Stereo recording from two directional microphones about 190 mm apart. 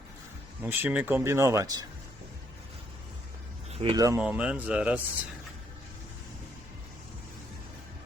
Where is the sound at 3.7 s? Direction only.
35° right (ahead or behind).